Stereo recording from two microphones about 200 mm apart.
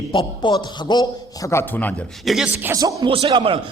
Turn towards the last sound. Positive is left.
turn(degrees=-25)  # may be behind; listen again after turning